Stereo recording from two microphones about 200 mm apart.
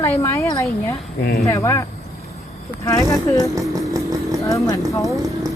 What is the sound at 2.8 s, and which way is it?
Speech, 15° left (ahead or behind).